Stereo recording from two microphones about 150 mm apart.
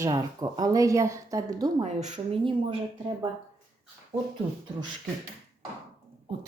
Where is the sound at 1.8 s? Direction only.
50° right (ahead or behind).